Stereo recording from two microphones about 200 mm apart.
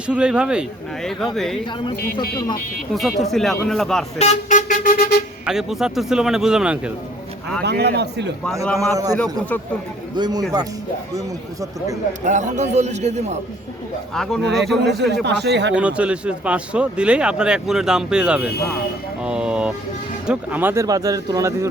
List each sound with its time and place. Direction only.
0.1 s speech: 5° right (ahead or behind)
2.9 s speech: centre (ahead or behind)
4.2 s vehicle: 35° left (ahead or behind)
5.5 s speech: 5° right (ahead or behind)
7.6 s a man's voice: 55° right (ahead or behind)
8.8 s speech: 15° right (ahead or behind)
10.2 s speech: 20° right (ahead or behind)
12.2 s a man's voice: 35° right (ahead or behind)
14.1 s speech: centre (ahead or behind)
14.9 s a man's voice: 60° right (ahead or behind)
15.7 s speech: 5° right (ahead or behind)